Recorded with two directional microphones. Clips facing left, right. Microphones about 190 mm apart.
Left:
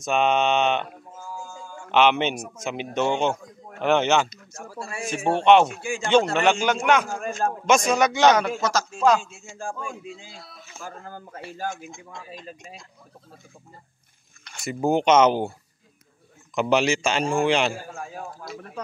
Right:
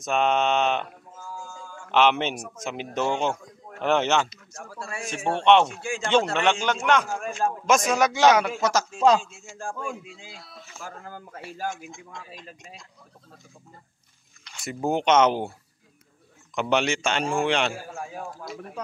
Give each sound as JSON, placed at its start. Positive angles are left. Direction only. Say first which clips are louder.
{"t": 0.0, "sound": "a man's voice", "louder": "left 2 dB", "side_deg": 0}
{"t": 1.9, "sound": "a man's voice", "louder": "left 2 dB", "side_deg": 0}
{"t": 8.5, "sound": "speech", "louder": "right 1 dB", "side_deg": -15}
{"t": 9.2, "sound": "a man's voice", "louder": "left 1 dB", "side_deg": 0}
{"t": 14.4, "sound": "a sound", "louder": "left 4 dB", "side_deg": 50}
{"t": 14.7, "sound": "a man's voice", "louder": "left 3 dB", "side_deg": 0}
{"t": 16.5, "sound": "a man's voice", "louder": "left 3 dB", "side_deg": 5}